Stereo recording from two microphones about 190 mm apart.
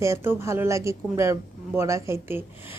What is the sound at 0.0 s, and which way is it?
Speech, 15° right (ahead or behind).